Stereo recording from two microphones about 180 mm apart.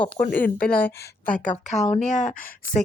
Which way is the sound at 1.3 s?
40° left (ahead or behind).